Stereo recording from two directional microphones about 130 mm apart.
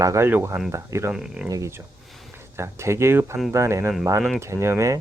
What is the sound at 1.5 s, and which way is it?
Speech, 25° right (ahead or behind).